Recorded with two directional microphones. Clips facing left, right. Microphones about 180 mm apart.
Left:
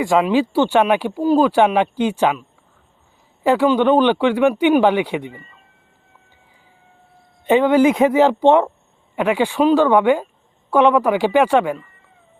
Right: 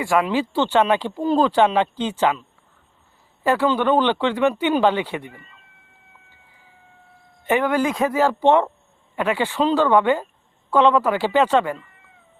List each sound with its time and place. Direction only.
0.0 s speech: 15° left (ahead or behind)
3.4 s speech: 15° left (ahead or behind)
7.4 s speech: 20° left (ahead or behind)